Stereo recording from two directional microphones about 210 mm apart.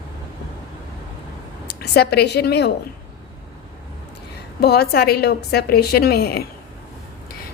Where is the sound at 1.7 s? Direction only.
50° left (ahead or behind).